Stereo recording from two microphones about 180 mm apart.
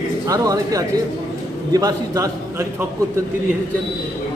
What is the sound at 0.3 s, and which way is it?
A man's voice, 20° right (ahead or behind).